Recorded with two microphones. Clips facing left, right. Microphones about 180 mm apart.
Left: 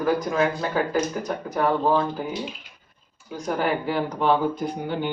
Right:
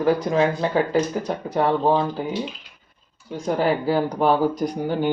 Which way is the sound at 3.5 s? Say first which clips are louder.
Right 4 dB; 35° right (ahead or behind).